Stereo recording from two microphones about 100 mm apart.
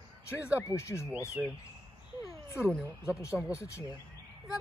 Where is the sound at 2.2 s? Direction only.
30° left (ahead or behind).